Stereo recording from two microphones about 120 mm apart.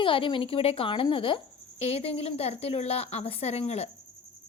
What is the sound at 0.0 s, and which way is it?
Speech, 45° left (ahead or behind).